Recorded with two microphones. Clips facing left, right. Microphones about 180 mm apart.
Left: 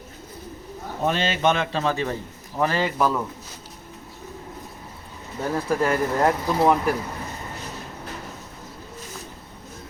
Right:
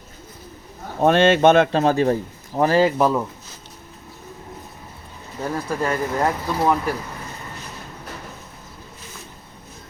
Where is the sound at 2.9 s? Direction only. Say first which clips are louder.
Right 4 dB; 25° right (ahead or behind).